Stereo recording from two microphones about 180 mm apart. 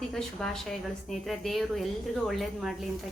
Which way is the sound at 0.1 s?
5° left (ahead or behind).